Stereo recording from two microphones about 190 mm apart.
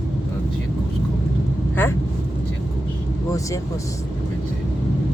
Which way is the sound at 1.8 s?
10° left (ahead or behind).